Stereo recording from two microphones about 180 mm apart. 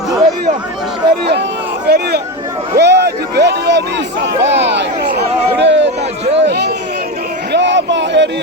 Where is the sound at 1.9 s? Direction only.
65° right (ahead or behind).